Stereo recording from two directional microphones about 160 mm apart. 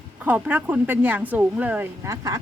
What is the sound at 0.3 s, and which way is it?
Speech, 10° right (ahead or behind).